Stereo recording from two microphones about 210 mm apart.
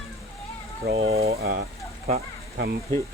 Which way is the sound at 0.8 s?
65° right (ahead or behind).